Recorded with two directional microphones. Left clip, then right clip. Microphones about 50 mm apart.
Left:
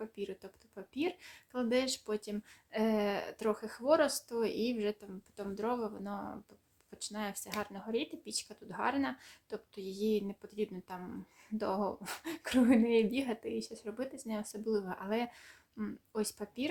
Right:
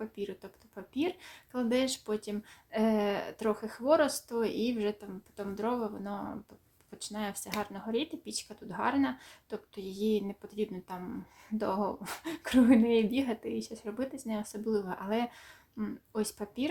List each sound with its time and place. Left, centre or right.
0.2 s speech: left
4.4 s speech: centre
5.4 s speech: left
11.8 s speech: left